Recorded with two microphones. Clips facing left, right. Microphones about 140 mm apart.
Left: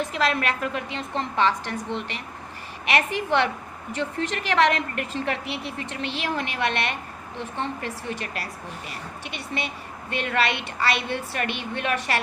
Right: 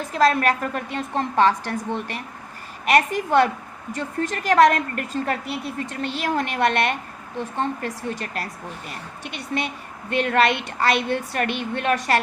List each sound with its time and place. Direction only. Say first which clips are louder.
0.1 s speech: right 6 dB; 40° right (ahead or behind)